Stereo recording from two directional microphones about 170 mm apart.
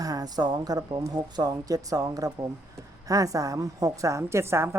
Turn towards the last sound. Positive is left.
turn(degrees=-15)  # may be behind; listen again after turning